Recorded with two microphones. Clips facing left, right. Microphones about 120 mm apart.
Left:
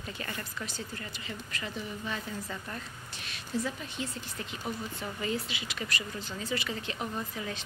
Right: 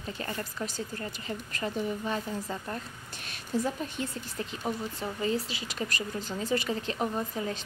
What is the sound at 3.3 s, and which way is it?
A woman's voice, 45° right (ahead or behind).